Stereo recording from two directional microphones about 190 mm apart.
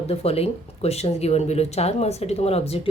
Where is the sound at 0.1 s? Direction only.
30° left (ahead or behind).